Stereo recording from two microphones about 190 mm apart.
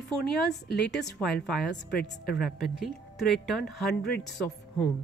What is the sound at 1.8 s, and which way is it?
Speech, 55° left (ahead or behind).